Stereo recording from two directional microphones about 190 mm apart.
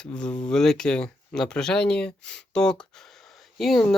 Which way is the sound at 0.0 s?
5° left (ahead or behind).